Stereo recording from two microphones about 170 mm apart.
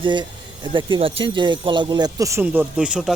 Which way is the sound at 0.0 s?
25° right (ahead or behind).